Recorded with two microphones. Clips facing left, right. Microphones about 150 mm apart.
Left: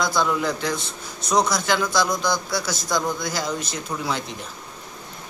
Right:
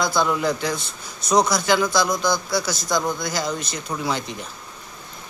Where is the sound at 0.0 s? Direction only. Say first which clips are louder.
Right 1 dB; centre (ahead or behind).